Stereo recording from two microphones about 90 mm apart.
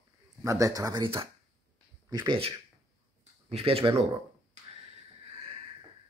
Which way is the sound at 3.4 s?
90° right.